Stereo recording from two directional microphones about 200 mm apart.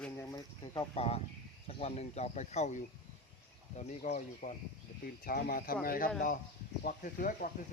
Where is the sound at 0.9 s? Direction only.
30° left (ahead or behind).